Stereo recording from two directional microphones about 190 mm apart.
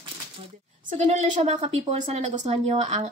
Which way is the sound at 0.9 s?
40° right (ahead or behind).